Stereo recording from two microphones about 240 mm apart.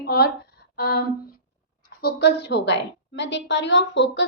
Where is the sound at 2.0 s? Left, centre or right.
Left.